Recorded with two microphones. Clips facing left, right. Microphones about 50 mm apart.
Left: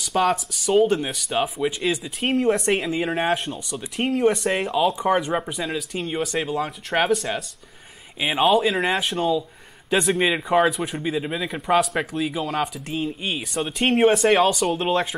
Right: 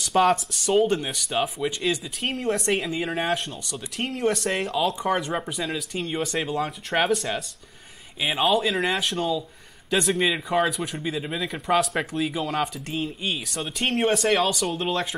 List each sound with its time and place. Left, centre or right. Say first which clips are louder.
0.1 s speech: right 1 dB; centre
10.5 s speech: left 4 dB; centre